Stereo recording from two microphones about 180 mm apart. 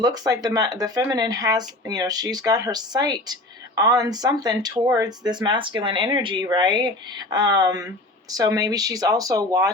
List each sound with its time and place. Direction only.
0.0 s speech: 20° right (ahead or behind)